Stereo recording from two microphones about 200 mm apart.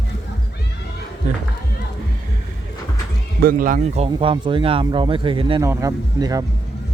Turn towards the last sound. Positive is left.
turn(degrees=-20)  # may be behind; listen again after turning